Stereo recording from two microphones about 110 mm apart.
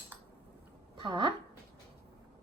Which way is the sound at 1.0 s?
45° right (ahead or behind).